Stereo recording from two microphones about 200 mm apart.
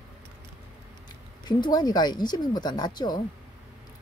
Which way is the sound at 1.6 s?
20° left (ahead or behind).